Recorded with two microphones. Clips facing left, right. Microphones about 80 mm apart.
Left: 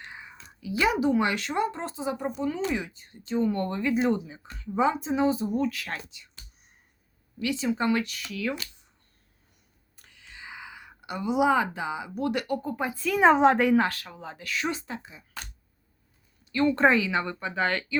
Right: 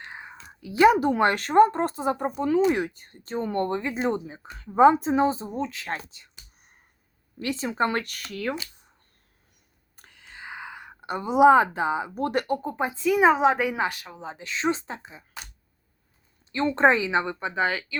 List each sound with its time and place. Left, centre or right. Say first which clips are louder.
0.0 s speech: right 3 dB; right
7.3 s speech: right 1 dB; right
10.0 s a sound: right 3 dB; right
12.6 s a woman's voice: right 4 dB; right
16.5 s a woman's voice: right 1 dB; right